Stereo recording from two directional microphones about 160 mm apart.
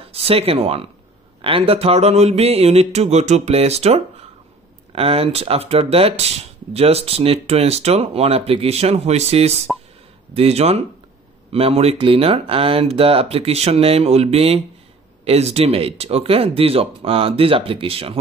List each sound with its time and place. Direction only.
0.1 s speech: 40° right (ahead or behind)
9.7 s speech: centre (ahead or behind)
10.3 s speech: 40° right (ahead or behind)